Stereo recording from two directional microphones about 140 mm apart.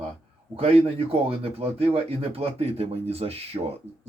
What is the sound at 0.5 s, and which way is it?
Speech, 45° right (ahead or behind).